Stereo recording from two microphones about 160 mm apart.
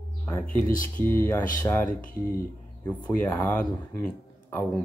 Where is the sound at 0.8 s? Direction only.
10° left (ahead or behind).